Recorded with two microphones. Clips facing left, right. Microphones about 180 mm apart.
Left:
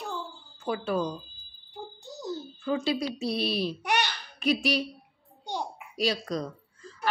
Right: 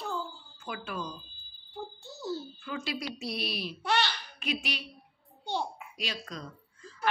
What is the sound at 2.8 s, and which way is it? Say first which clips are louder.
Speech: left 7 dB; 30° left (ahead or behind).